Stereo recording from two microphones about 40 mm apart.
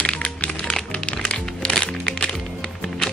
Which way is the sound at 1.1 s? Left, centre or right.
Left.